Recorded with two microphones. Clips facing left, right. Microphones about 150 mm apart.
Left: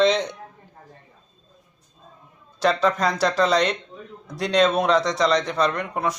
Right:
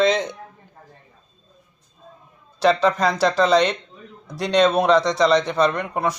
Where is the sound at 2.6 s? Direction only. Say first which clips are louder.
Right 3 dB; centre (ahead or behind).